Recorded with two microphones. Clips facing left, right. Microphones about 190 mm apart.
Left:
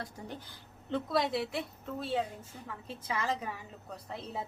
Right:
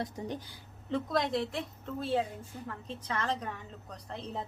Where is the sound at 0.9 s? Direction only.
Centre (ahead or behind).